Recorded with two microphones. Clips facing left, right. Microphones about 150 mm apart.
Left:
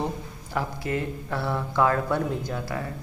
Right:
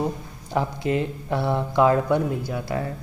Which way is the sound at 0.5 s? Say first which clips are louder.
Right 5 dB; 20° right (ahead or behind).